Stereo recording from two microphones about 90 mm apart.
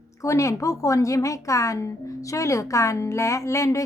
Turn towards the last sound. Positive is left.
turn(degrees=35)  # may be behind; listen again after turning